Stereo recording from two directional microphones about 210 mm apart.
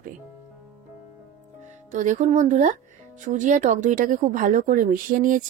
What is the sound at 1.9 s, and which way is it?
Speech, 35° right (ahead or behind).